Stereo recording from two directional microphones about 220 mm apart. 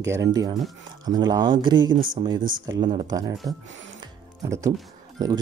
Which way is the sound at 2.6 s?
20° right (ahead or behind).